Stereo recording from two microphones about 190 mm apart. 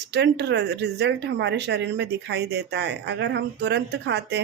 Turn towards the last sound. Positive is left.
turn(degrees=-60)  # may be behind; listen again after turning